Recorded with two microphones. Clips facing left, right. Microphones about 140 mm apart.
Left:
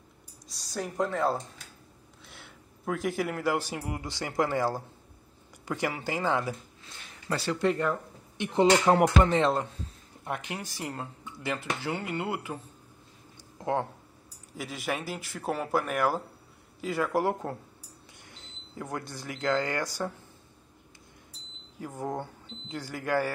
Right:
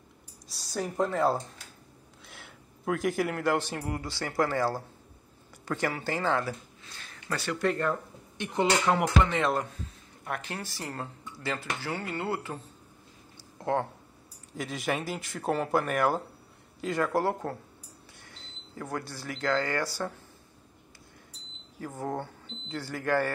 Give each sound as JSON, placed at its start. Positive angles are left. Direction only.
{"t": 0.5, "sound": "a man's voice", "side_deg": 0}
{"t": 7.2, "sound": "speech", "side_deg": 30}
{"t": 7.6, "sound": "speech", "side_deg": 15}
{"t": 8.4, "sound": "speech", "side_deg": 30}
{"t": 8.9, "sound": "speech", "side_deg": 50}
{"t": 9.3, "sound": "speech", "side_deg": 25}
{"t": 13.6, "sound": "a sound", "side_deg": 15}
{"t": 14.6, "sound": "speech", "side_deg": 0}
{"t": 21.7, "sound": "speech", "side_deg": 15}